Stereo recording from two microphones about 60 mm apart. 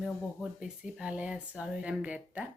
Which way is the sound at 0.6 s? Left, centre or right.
Centre.